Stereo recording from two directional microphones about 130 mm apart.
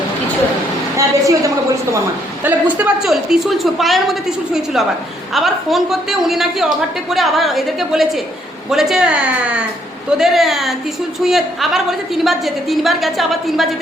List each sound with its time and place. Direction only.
0.9 s a woman's voice: 25° right (ahead or behind)
2.4 s a woman's voice: 15° right (ahead or behind)